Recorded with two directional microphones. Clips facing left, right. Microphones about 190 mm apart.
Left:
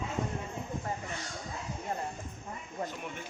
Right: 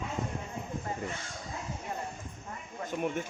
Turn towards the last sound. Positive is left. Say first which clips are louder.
# right 8 dB
turn(degrees=-50)  # may be behind; listen again after turning